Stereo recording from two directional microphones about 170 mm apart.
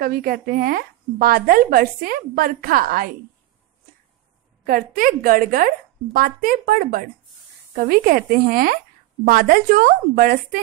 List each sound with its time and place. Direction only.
0.0 s a woman's voice: 60° right (ahead or behind)
4.6 s a woman's voice: 55° right (ahead or behind)